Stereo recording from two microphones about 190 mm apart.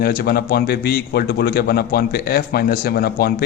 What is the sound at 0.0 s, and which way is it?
A man's voice, 55° left (ahead or behind).